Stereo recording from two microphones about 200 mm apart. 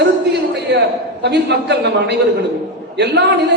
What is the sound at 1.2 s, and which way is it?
Speech, 55° right (ahead or behind).